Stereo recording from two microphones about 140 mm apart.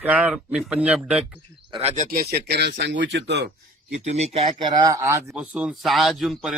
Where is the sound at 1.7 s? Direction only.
45° right (ahead or behind).